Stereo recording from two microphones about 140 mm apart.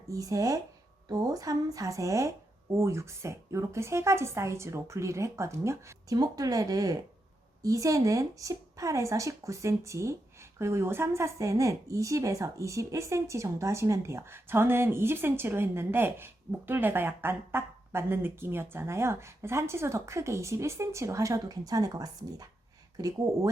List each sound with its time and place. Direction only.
0.1 s speech: 25° right (ahead or behind)